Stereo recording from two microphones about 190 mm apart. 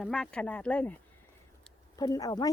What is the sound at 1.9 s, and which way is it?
Speech, 20° left (ahead or behind).